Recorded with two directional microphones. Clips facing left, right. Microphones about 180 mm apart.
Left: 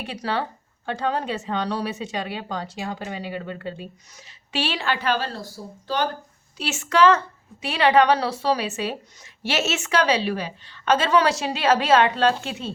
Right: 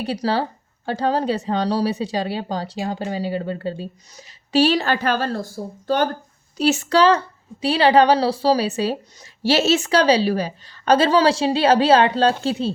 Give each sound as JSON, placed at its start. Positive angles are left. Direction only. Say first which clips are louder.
{"t": 0.0, "sound": "a woman's voice", "louder": "right 5 dB", "side_deg": -35}
{"t": 6.6, "sound": "a woman's voice", "louder": "right 3 dB", "side_deg": -35}